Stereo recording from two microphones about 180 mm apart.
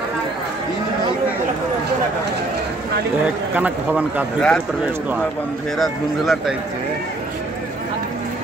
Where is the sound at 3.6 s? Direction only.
10° right (ahead or behind).